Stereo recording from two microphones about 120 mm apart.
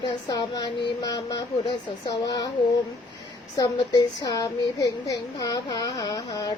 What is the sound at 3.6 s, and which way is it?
Speech, 35° left (ahead or behind).